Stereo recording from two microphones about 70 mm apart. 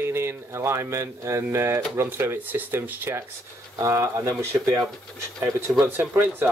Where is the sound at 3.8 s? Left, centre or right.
Right.